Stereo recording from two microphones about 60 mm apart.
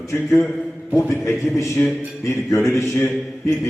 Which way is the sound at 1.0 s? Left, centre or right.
Left.